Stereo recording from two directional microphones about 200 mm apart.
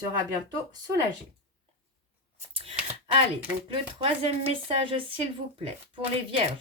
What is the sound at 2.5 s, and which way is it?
Speech, 30° right (ahead or behind).